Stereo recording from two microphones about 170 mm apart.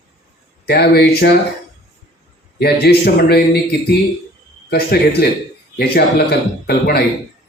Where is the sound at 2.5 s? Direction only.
65° left (ahead or behind).